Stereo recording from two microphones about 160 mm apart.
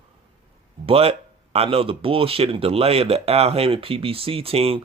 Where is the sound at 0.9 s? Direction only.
35° right (ahead or behind).